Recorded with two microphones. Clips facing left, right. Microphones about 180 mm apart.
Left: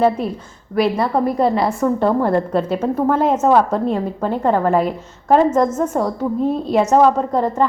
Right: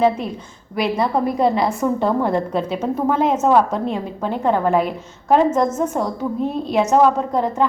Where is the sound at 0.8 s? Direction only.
5° left (ahead or behind).